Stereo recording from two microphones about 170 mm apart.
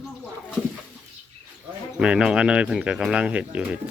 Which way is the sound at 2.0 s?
5° right (ahead or behind).